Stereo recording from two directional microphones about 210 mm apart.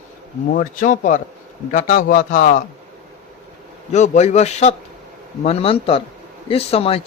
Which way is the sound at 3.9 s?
35° left (ahead or behind).